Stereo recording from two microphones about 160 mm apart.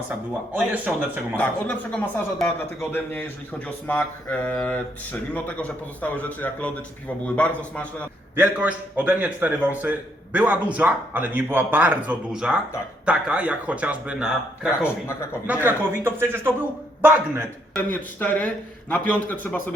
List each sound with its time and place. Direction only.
0.5 s a man's voice: 15° right (ahead or behind)
1.4 s a man's voice: 10° left (ahead or behind)
8.4 s a man's voice: 10° right (ahead or behind)
15.0 s a man's voice: 15° left (ahead or behind)
15.4 s a man's voice: 10° right (ahead or behind)
17.9 s a man's voice: 10° left (ahead or behind)